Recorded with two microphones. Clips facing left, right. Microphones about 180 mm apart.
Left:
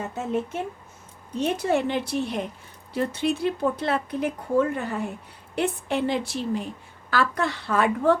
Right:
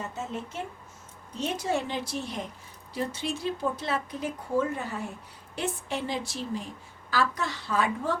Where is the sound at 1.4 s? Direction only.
60° left (ahead or behind).